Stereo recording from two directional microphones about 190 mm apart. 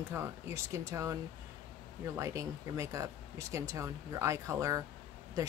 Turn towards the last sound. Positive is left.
turn(degrees=-15)  # may be behind; listen again after turning